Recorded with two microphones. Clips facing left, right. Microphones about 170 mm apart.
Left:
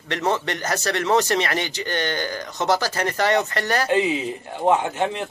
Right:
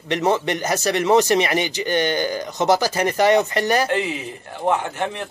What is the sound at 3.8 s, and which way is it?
A man's voice, 15° left (ahead or behind).